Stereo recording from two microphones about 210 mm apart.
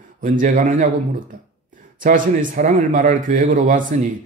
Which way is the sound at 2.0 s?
40° right (ahead or behind).